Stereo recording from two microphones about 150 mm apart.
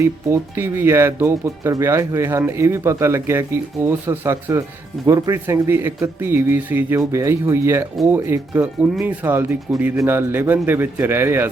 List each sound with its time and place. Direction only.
0.0 s speech: 15° right (ahead or behind)